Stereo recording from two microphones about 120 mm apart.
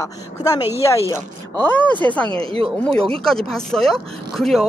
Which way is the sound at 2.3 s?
50° right (ahead or behind).